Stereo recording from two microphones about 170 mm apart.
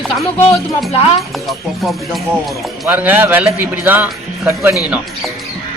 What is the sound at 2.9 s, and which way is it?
Speech, 10° right (ahead or behind).